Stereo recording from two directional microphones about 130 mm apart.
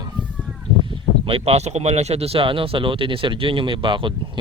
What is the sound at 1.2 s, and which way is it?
Speech, 50° right (ahead or behind).